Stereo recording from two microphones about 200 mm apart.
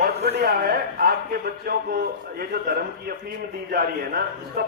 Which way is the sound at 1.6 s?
45° right (ahead or behind).